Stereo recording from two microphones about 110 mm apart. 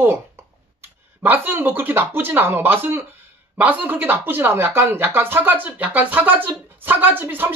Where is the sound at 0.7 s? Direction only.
15° right (ahead or behind).